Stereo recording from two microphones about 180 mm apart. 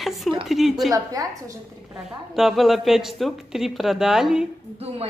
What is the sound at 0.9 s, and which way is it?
Speech, 20° right (ahead or behind).